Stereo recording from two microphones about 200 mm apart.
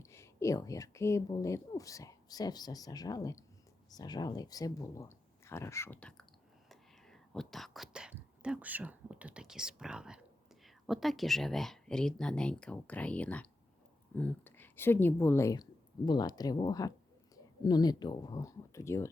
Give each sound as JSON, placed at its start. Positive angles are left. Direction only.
{"t": 0.0, "sound": "speech", "side_deg": 15}